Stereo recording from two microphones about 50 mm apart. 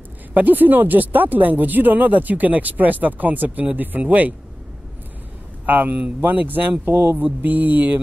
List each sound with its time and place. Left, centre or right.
0.3 s speech: right
5.7 s speech: right